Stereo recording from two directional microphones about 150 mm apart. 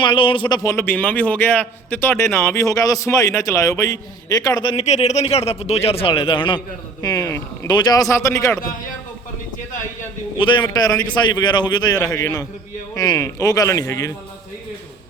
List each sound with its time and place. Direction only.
0.0 s a man's voice: 35° left (ahead or behind)
4.8 s a man's voice: 45° left (ahead or behind)
7.0 s a man's voice: 20° left (ahead or behind)
10.3 s a man's voice: 30° left (ahead or behind)